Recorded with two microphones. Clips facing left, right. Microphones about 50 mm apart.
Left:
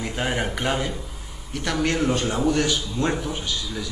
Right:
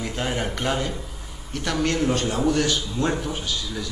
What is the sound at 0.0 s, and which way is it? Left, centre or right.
A man's voice, centre.